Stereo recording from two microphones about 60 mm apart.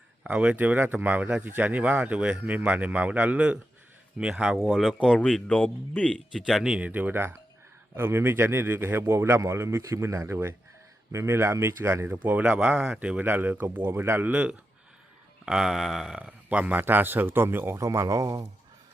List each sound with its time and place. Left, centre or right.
0.3 s speech: right
4.2 s mantra: centre
4.6 s speech: centre
5.2 s speech: centre
6.7 s speech: centre
6.9 s speech: right
12.1 s speech: right
14.0 s speech: right
14.3 s speech: right
15.4 s mantra: centre
16.1 s speech: centre; by 17.7 s right
17.7 s speech: right